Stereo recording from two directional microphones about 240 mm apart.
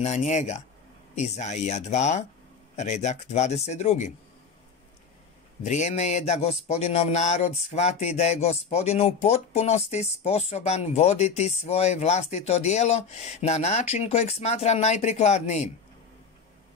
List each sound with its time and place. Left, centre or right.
0.0 s speech: left
5.6 s speech: left